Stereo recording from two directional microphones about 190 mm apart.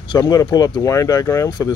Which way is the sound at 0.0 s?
20° left (ahead or behind).